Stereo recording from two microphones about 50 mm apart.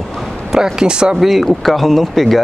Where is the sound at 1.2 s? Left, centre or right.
Centre.